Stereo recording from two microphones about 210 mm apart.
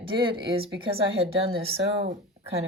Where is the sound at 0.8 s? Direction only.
25° right (ahead or behind).